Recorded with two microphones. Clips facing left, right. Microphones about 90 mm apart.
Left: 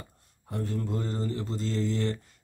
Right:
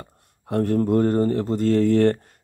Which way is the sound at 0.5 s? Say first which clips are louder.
Right 13 dB; 65° right (ahead or behind).